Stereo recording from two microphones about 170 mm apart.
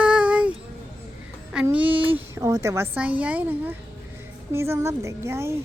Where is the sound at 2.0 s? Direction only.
30° right (ahead or behind).